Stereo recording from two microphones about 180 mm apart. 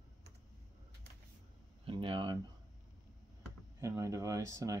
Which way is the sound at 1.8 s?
30° right (ahead or behind).